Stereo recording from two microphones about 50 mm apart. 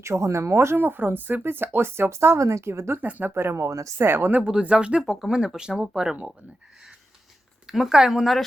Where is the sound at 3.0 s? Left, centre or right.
Right.